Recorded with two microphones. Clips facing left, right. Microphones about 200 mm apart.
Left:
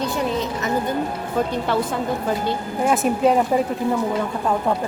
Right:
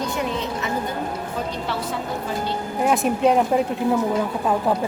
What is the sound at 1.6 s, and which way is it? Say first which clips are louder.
Speech: left 5 dB; 50° left (ahead or behind).